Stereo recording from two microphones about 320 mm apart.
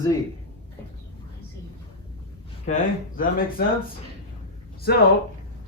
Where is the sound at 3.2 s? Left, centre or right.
Left.